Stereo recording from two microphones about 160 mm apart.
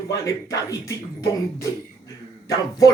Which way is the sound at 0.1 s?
20° left (ahead or behind).